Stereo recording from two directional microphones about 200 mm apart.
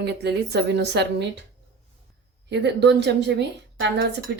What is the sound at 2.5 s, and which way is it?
Speech, 60° right (ahead or behind).